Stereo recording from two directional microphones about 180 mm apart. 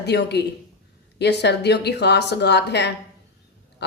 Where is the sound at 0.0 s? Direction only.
70° left (ahead or behind).